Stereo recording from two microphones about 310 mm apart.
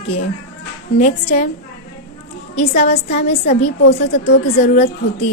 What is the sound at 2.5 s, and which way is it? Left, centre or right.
A woman's voice, left.